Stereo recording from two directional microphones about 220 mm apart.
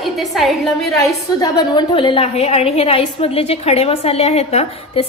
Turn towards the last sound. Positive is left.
turn(degrees=30)  # may be behind; listen again after turning